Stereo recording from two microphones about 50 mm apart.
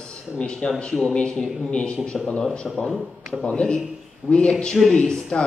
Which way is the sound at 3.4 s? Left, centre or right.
Centre.